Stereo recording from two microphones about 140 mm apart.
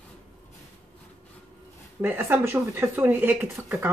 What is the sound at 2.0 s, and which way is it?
Speech, 15° right (ahead or behind).